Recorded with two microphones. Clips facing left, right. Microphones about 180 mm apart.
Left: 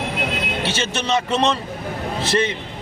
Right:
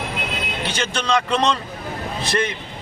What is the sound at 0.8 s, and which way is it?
A man's voice, 25° left (ahead or behind).